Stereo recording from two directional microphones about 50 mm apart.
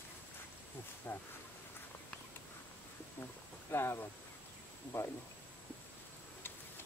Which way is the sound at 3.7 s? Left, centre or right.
Left.